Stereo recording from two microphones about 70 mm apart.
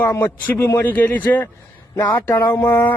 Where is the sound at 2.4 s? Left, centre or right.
Left.